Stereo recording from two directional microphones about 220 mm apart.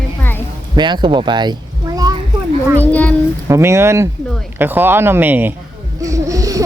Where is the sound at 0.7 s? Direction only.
20° right (ahead or behind).